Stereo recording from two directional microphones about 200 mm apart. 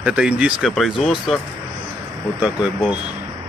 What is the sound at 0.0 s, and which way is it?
Speech, 5° right (ahead or behind).